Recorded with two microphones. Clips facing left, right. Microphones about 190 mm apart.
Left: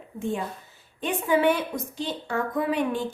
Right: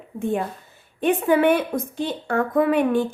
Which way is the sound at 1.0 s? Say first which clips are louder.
Right 5 dB; 55° right (ahead or behind).